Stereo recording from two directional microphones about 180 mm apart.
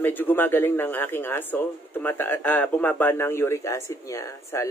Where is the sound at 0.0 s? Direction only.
10° left (ahead or behind).